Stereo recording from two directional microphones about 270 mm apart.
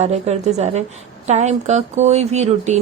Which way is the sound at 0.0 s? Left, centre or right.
Right.